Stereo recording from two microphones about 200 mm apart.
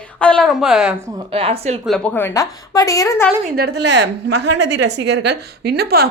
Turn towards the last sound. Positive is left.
turn(degrees=-50)  # may be behind; listen again after turning